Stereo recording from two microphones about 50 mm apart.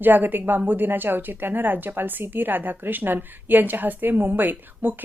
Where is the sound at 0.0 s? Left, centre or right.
Right.